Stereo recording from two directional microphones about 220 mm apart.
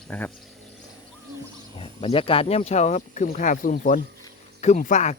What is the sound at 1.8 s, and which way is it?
Speech, 25° left (ahead or behind).